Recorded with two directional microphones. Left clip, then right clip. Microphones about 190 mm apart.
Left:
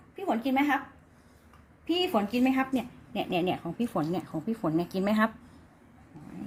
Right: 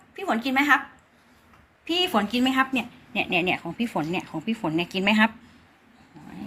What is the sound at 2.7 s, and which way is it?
A woman's voice, 15° left (ahead or behind).